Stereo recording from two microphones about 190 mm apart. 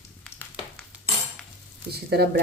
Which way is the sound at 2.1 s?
55° right (ahead or behind).